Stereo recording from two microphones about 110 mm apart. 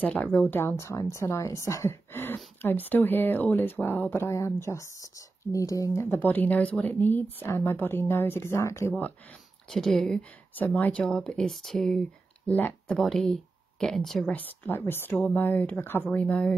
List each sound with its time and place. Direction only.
0.0 s a woman's voice: 15° left (ahead or behind); by 6.0 s 30° left (ahead or behind)
6.0 s a woman's voice: 15° left (ahead or behind)
9.7 s speech: 5° left (ahead or behind)
10.5 s speech: 15° left (ahead or behind)
12.9 s speech: centre (ahead or behind)
14.3 s speech: 20° left (ahead or behind)